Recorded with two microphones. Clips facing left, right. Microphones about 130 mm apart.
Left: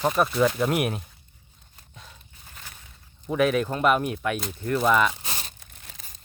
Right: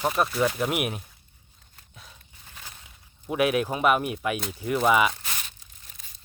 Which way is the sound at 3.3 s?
10° right (ahead or behind).